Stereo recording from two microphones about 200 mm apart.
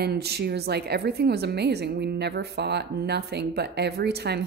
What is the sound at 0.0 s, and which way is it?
A woman's voice, 55° right (ahead or behind).